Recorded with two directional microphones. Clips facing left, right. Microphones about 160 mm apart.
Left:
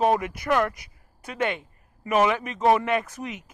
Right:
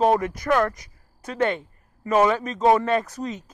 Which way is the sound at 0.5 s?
15° left (ahead or behind).